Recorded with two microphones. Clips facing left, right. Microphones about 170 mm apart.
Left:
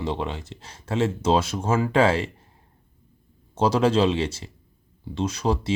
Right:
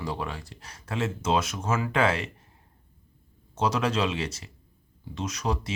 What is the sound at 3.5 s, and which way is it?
Speech, 30° left (ahead or behind).